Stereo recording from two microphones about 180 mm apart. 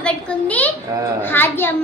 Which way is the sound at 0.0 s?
10° left (ahead or behind).